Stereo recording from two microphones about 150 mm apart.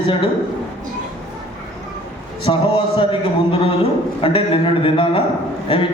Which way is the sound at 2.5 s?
35° left (ahead or behind).